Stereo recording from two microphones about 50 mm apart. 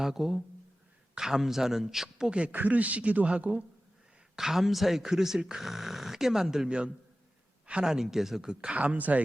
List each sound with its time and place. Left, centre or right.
0.0 s speech: centre
2.4 s a man's voice: right
4.4 s a man's voice: centre
7.9 s speech: centre
8.7 s speech: right